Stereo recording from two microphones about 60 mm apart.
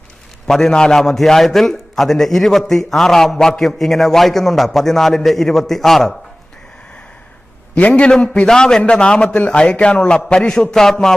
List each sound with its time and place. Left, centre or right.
0.5 s a man's voice: centre
7.7 s a man's voice: left
8.5 s a man's voice: centre